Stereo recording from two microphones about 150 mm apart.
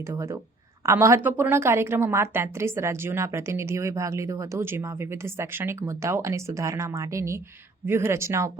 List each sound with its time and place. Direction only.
0.1 s a woman's voice: 20° right (ahead or behind)